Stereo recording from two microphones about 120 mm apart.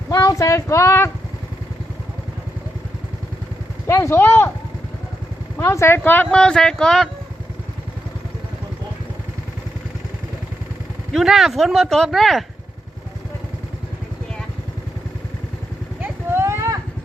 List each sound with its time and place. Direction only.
0.1 s speech: 30° left (ahead or behind)
3.8 s speech: 20° left (ahead or behind)
5.5 s speech: 20° left (ahead or behind); by 7.1 s 5° left (ahead or behind)
11.1 s speech: 5° right (ahead or behind)
16.0 s vehicle: 20° right (ahead or behind)